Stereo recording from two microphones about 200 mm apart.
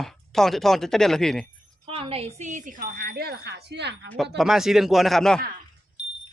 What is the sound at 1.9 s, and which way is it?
Speech, 25° right (ahead or behind).